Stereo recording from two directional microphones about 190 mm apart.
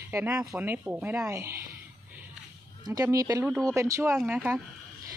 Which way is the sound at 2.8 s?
20° right (ahead or behind).